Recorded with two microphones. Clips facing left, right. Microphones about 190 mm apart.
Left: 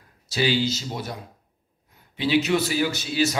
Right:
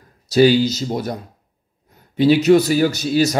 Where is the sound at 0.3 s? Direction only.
40° right (ahead or behind).